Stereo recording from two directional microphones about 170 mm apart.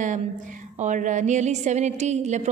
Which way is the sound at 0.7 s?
45° right (ahead or behind).